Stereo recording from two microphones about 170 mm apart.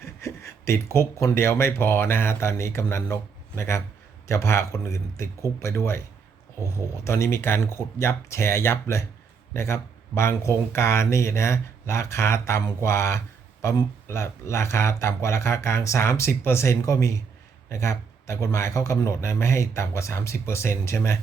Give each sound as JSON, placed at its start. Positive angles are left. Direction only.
{"t": 0.0, "sound": "speech", "side_deg": 15}
{"t": 7.0, "sound": "speech", "side_deg": 15}